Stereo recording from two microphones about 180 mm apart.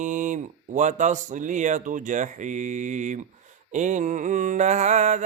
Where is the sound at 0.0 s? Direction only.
45° right (ahead or behind).